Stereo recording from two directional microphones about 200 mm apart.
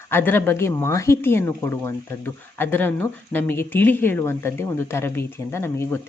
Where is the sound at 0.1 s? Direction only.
10° left (ahead or behind).